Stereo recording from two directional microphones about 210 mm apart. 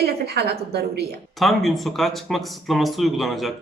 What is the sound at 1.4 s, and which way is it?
Speech, centre (ahead or behind).